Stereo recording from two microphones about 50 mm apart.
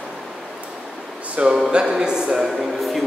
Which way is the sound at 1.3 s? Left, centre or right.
Right.